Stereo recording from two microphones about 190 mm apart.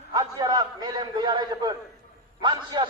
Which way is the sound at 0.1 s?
20° right (ahead or behind).